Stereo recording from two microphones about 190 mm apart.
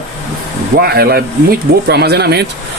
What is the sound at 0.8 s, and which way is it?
Speech, 55° right (ahead or behind).